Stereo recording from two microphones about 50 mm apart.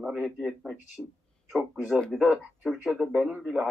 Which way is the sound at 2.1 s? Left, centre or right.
Centre.